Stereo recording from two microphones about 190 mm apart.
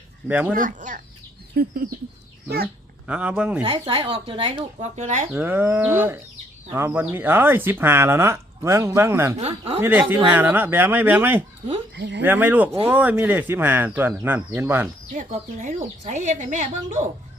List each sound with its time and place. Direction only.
0.3 s speech: 10° right (ahead or behind)
0.5 s speech: 45° right (ahead or behind)
3.1 s speech: 5° right (ahead or behind)
3.6 s speech: 30° right (ahead or behind)
4.9 s speech: 40° right (ahead or behind)
5.3 s speech: 10° right (ahead or behind)
9.4 s speech: 35° right (ahead or behind)
9.8 s speech: 10° right (ahead or behind)
11.9 s speech: 65° right (ahead or behind)
12.2 s speech: 10° right (ahead or behind)
15.1 s speech: 40° right (ahead or behind)